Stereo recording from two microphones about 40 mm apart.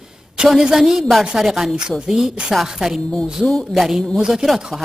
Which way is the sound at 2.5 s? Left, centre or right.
Centre.